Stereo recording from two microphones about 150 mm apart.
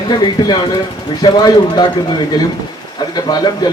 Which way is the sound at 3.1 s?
25° left (ahead or behind).